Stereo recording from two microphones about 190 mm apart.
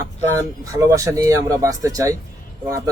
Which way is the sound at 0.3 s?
15° right (ahead or behind).